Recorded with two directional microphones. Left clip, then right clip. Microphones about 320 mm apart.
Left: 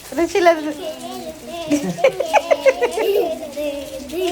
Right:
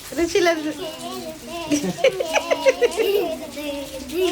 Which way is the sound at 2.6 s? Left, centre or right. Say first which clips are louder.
Left 2 dB; left.